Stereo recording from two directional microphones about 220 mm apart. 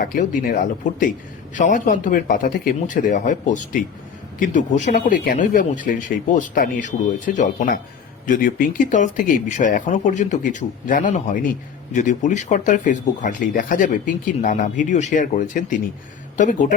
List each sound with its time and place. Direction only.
0.0 s speech: 40° left (ahead or behind)